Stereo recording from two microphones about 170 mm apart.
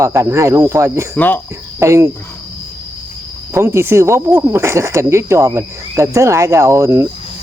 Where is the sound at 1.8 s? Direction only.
15° right (ahead or behind).